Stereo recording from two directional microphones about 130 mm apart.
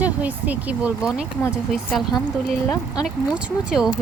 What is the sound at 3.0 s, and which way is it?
Speech, 5° right (ahead or behind).